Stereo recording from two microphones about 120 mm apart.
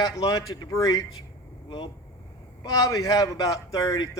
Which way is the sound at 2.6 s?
30° left (ahead or behind).